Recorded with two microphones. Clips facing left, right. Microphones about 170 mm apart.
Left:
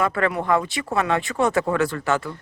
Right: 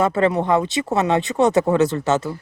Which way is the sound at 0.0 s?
25° right (ahead or behind).